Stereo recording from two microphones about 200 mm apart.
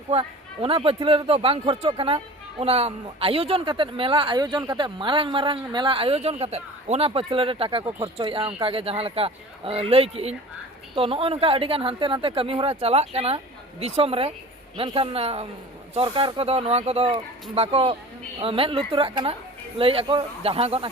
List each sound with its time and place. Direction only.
0.1 s speech: 30° right (ahead or behind)